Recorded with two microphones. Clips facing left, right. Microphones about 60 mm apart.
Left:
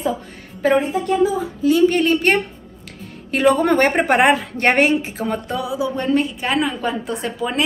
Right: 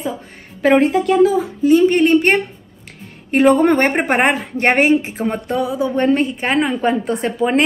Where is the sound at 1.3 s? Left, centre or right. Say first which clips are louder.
Right 3 dB; right.